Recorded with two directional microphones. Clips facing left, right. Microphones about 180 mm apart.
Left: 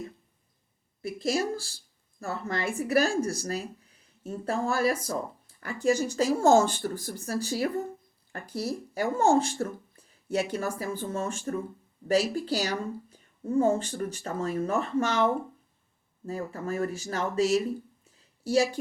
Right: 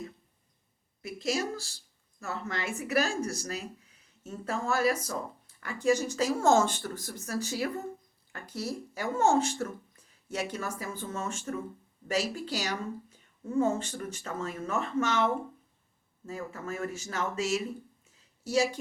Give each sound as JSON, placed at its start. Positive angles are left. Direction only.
{"t": 1.0, "sound": "speech", "side_deg": 35}